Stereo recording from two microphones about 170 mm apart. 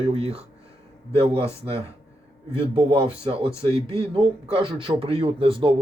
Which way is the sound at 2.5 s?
35° right (ahead or behind).